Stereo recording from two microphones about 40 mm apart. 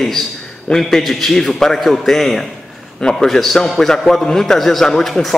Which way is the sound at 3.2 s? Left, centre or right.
Centre.